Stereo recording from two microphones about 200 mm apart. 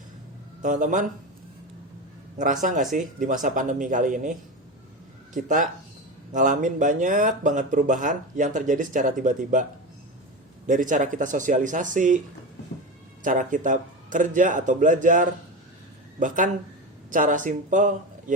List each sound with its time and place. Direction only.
0.6 s speech: 40° right (ahead or behind)
2.4 s speech: 40° right (ahead or behind)
10.7 s speech: 40° right (ahead or behind)
13.2 s speech: 40° right (ahead or behind)